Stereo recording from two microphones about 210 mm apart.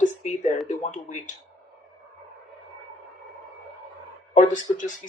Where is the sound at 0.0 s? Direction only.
35° left (ahead or behind).